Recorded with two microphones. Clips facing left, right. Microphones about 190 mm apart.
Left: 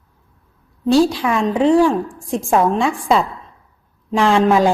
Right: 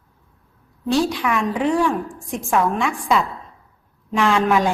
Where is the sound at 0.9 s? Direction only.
30° left (ahead or behind).